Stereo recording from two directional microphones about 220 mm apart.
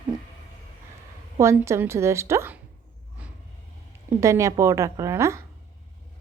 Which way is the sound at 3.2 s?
5° right (ahead or behind).